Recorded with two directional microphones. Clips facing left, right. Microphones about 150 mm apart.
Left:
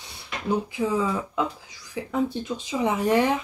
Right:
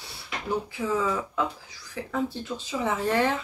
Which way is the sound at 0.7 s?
15° left (ahead or behind).